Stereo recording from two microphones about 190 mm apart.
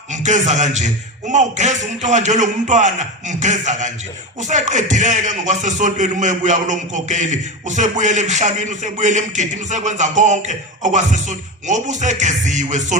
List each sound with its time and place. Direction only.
0.1 s speech: 40° right (ahead or behind)